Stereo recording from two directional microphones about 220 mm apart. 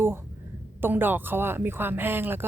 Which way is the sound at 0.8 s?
10° right (ahead or behind).